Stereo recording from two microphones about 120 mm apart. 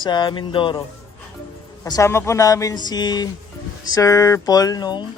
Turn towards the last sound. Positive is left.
turn(degrees=35)  # may be behind; listen again after turning